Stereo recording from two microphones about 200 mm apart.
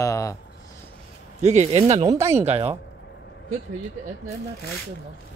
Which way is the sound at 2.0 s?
15° right (ahead or behind).